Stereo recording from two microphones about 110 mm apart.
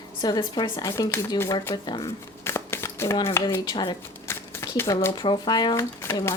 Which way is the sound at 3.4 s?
25° left (ahead or behind).